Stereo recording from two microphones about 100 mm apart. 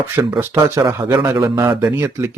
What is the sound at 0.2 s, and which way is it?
A man's voice, 25° right (ahead or behind).